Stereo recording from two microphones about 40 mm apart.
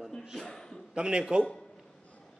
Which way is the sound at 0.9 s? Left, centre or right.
Right.